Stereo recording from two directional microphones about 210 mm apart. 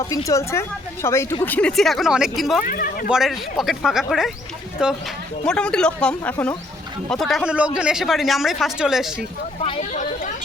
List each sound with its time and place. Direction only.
0.3 s speech: 15° left (ahead or behind)
2.6 s speech: 40° left (ahead or behind)
3.1 s speech: centre (ahead or behind)
9.6 s speech: 35° left (ahead or behind)